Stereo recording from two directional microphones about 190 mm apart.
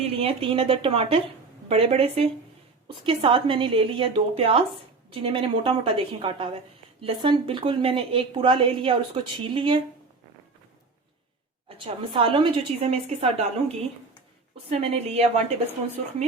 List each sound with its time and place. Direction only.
0.0 s a woman's voice: 30° right (ahead or behind)
11.8 s a woman's voice: 30° right (ahead or behind)
14.5 s speech: 30° right (ahead or behind)